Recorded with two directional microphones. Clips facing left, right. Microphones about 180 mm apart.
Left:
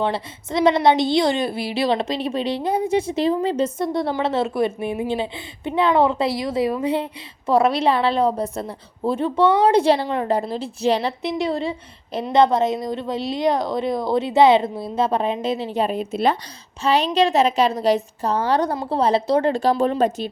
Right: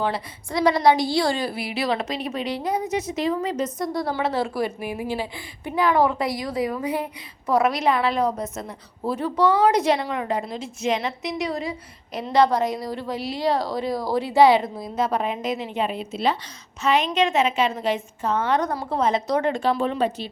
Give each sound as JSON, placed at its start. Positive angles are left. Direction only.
{"t": 0.0, "sound": "a woman's voice", "side_deg": 25}
{"t": 16.8, "sound": "a woman's voice", "side_deg": 35}